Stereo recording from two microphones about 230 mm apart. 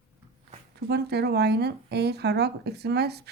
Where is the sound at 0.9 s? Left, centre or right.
Right.